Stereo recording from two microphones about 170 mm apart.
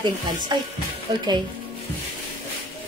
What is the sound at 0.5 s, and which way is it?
Speech, 25° right (ahead or behind).